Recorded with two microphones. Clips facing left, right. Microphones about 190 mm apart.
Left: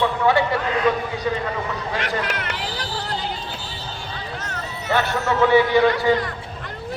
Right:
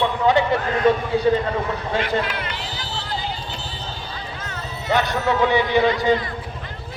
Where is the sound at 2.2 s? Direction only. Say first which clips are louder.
Left 1 dB; 75° left (ahead or behind).